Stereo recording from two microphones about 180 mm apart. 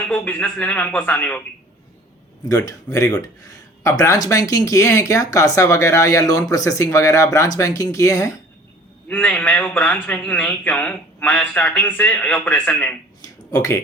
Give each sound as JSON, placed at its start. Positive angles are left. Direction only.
{"t": 0.2, "sound": "a man's voice", "side_deg": 10}
{"t": 2.5, "sound": "a man's voice", "side_deg": 20}
{"t": 13.2, "sound": "a sound", "side_deg": 20}